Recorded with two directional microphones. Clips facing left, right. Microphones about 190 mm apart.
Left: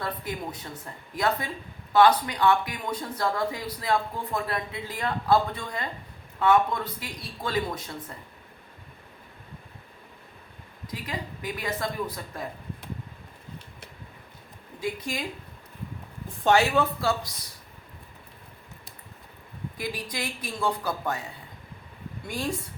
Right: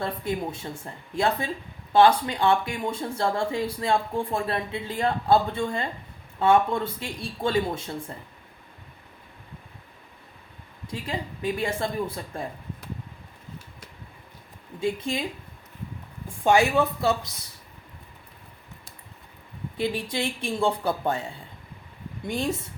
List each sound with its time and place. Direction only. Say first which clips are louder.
0.0 s speech: right 4 dB; 25° right (ahead or behind)
10.8 s speech: right 3 dB; 30° right (ahead or behind)
14.8 s speech: right 4 dB; 25° right (ahead or behind)
16.4 s a woman's voice: right 1 dB; 15° right (ahead or behind)
19.7 s speech: right 7 dB; 25° right (ahead or behind)
22.3 s speech: right 4 dB; 25° right (ahead or behind)